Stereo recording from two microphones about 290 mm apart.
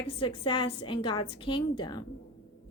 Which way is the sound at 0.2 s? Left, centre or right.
Centre.